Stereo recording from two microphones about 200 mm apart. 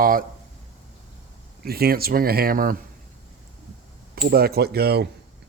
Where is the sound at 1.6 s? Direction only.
50° right (ahead or behind).